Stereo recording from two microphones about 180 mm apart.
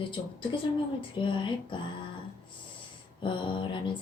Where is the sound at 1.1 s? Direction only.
25° left (ahead or behind).